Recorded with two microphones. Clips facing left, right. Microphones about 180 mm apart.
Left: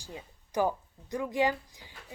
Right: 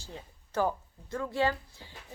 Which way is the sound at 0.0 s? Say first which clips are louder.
Left 1 dB; 15° left (ahead or behind).